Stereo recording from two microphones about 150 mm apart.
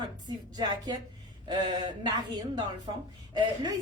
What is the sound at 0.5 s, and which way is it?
A woman's voice, 30° right (ahead or behind).